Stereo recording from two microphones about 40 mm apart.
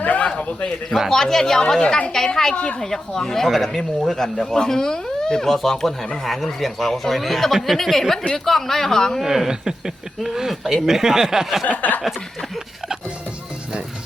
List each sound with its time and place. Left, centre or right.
0.0 s a man's voice: left
0.3 s a sound: left
1.1 s speech: centre
3.4 s speech: centre
9.2 s speech: centre
11.6 s a sound: left